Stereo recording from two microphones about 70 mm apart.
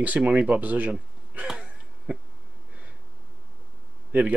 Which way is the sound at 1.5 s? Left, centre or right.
Centre.